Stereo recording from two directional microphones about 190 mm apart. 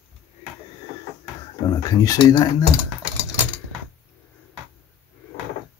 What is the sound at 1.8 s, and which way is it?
Speech, 20° left (ahead or behind).